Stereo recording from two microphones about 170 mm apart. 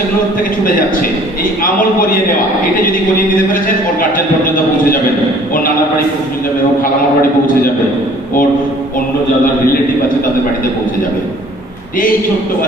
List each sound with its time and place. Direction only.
1.6 s a man's voice: 55° left (ahead or behind)
4.0 s a sound: 55° left (ahead or behind)
6.8 s a man's voice: 55° left (ahead or behind)